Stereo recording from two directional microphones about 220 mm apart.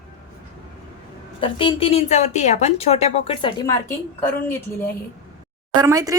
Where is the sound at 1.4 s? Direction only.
25° left (ahead or behind).